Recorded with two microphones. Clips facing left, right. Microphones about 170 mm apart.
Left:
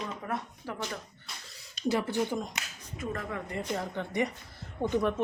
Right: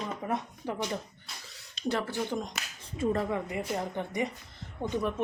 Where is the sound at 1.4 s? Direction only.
Centre (ahead or behind).